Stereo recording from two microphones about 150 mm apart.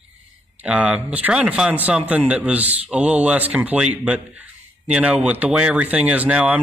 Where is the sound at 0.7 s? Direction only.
5° right (ahead or behind).